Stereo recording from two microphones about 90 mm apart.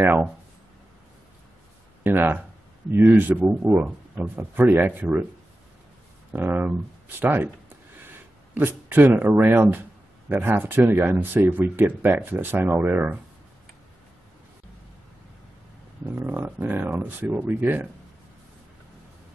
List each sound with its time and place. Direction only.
0.0 s speech: 20° right (ahead or behind)
2.0 s speech: 25° right (ahead or behind)
6.3 s speech: 20° right (ahead or behind)
8.5 s speech: 25° right (ahead or behind)
16.2 s speech: 20° right (ahead or behind)